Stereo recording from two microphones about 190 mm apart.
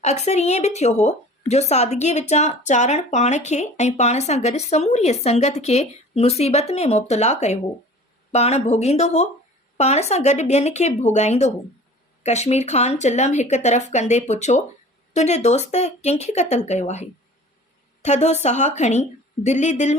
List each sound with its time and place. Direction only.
0.0 s a woman's voice: 35° left (ahead or behind)